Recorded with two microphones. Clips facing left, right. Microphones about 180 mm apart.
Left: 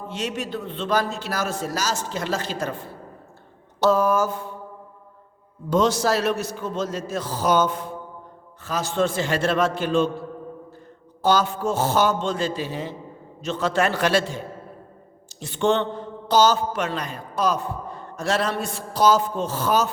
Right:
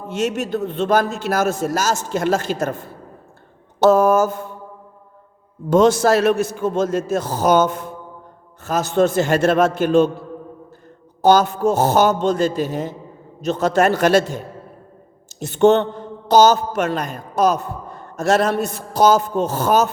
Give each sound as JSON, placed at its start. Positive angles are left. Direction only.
{"t": 0.1, "sound": "a man's voice", "side_deg": -45}
{"t": 5.7, "sound": "a man's voice", "side_deg": -50}
{"t": 11.2, "sound": "a man's voice", "side_deg": -45}